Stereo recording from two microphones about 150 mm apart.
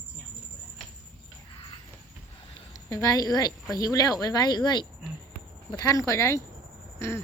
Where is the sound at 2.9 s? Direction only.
25° left (ahead or behind).